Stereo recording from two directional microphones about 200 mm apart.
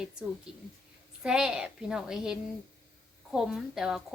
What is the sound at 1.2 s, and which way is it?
A woman's voice, 5° right (ahead or behind).